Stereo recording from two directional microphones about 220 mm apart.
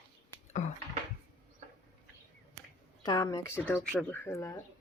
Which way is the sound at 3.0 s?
15° left (ahead or behind).